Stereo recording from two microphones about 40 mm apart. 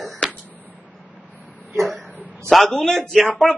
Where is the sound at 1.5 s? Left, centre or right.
Right.